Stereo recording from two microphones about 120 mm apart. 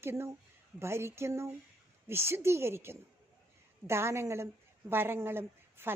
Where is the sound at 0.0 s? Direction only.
20° right (ahead or behind).